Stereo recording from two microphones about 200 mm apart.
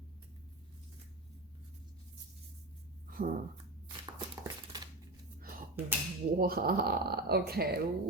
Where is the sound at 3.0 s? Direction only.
45° right (ahead or behind).